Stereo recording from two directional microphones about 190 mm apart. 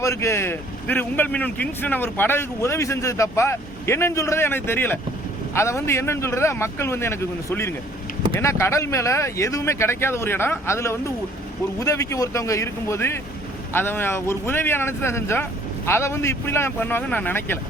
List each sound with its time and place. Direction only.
0.0 s speech: 15° left (ahead or behind)